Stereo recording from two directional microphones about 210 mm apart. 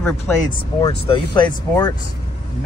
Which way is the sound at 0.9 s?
25° left (ahead or behind).